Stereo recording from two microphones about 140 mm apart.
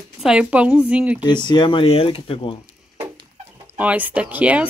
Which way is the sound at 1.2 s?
35° left (ahead or behind).